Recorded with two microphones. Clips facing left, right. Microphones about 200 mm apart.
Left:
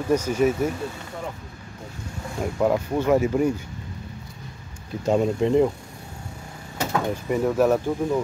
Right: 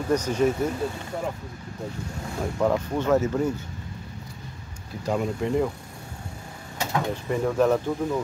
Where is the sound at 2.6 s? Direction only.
10° left (ahead or behind).